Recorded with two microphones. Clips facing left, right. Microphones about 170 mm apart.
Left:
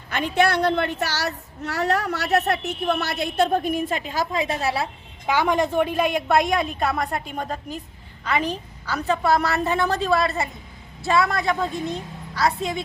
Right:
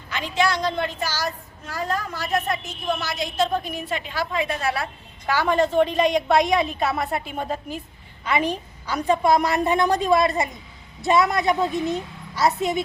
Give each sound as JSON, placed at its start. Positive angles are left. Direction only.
{"t": 0.1, "sound": "a woman's voice", "side_deg": 55}
{"t": 5.2, "sound": "a woman's voice", "side_deg": 15}